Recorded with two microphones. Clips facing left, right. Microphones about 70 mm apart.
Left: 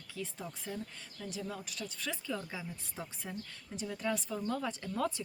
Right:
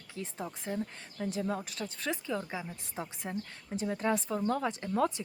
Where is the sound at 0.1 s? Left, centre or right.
Right.